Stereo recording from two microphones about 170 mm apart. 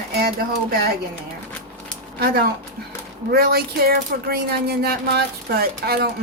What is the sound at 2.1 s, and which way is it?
Speech, 65° right (ahead or behind).